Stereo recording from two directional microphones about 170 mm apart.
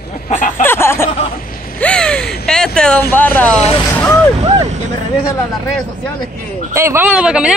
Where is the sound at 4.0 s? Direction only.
10° left (ahead or behind).